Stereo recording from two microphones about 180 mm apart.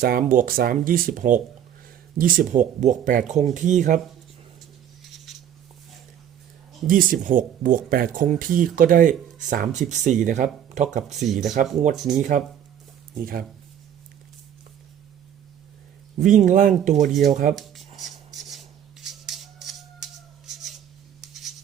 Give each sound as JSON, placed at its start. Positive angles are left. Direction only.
{"t": 0.0, "sound": "speech", "side_deg": -50}
{"t": 5.1, "sound": "a sound", "side_deg": 0}
{"t": 6.8, "sound": "speech", "side_deg": -50}
{"t": 11.3, "sound": "speech", "side_deg": 0}
{"t": 13.1, "sound": "speech", "side_deg": -55}
{"t": 16.2, "sound": "speech", "side_deg": -45}
{"t": 17.1, "sound": "speech", "side_deg": 0}
{"t": 17.5, "sound": "writing", "side_deg": 0}
{"t": 21.2, "sound": "a sound", "side_deg": 0}